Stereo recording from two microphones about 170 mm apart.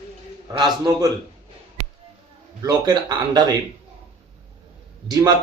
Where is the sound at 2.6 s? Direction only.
25° right (ahead or behind).